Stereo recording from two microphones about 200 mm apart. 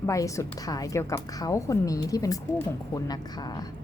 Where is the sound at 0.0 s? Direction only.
15° left (ahead or behind).